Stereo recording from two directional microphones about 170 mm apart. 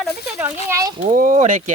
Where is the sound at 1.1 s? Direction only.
50° right (ahead or behind).